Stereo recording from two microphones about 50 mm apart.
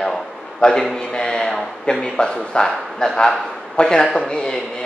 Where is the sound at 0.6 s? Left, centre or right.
Centre.